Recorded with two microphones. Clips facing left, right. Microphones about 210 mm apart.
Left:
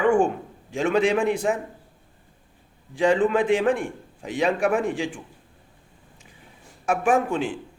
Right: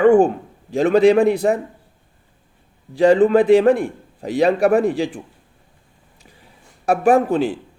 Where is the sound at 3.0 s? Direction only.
35° right (ahead or behind).